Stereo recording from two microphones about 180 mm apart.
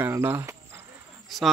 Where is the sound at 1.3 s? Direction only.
Centre (ahead or behind).